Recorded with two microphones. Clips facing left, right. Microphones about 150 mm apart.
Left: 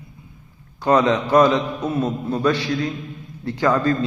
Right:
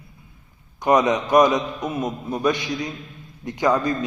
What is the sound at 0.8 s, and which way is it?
A man's voice, 15° right (ahead or behind).